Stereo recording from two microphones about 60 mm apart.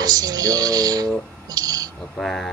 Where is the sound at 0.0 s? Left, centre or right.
Right.